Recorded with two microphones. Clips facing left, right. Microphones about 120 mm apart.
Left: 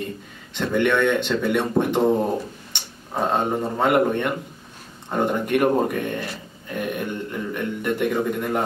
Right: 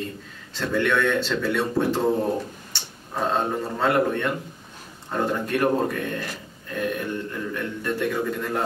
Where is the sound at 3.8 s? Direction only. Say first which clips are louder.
Left 2 dB; 20° left (ahead or behind).